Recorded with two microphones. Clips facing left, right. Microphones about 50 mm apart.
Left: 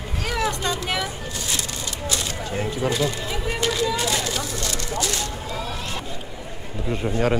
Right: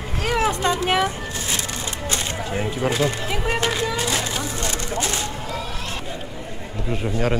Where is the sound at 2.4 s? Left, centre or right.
Centre.